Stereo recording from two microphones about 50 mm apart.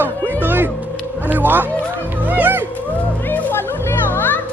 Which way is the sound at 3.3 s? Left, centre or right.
Left.